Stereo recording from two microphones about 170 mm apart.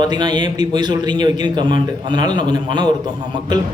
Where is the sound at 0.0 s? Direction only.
25° right (ahead or behind).